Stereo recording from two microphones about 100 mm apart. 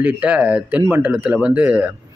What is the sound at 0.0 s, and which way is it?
Speech, 15° right (ahead or behind).